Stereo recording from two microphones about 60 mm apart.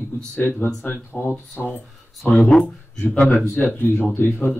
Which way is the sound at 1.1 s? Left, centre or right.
Left.